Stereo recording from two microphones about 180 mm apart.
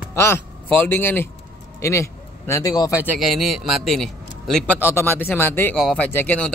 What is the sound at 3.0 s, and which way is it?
A man's voice, centre (ahead or behind).